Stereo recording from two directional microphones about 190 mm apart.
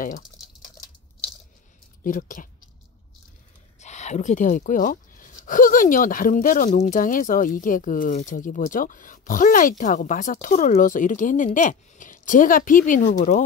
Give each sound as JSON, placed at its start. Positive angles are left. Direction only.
{"t": 2.0, "sound": "speech", "side_deg": 45}
{"t": 3.8, "sound": "speech", "side_deg": 35}